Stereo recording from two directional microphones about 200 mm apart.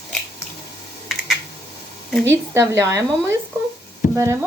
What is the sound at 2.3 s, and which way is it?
A woman's voice, 15° right (ahead or behind).